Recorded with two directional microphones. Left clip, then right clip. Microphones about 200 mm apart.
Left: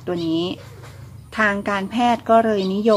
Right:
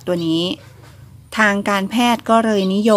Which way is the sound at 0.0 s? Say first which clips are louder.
Right 4 dB; 50° right (ahead or behind).